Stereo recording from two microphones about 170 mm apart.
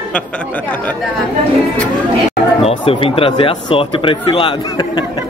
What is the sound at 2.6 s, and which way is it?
Speech, 30° left (ahead or behind).